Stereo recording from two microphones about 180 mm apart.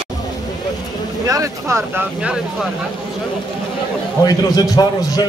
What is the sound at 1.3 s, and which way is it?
Speech, 15° right (ahead or behind).